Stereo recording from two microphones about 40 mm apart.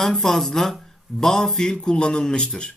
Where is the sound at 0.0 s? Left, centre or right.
Centre.